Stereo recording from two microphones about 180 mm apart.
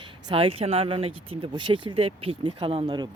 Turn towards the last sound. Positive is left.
turn(degrees=-25)  # may be behind; listen again after turning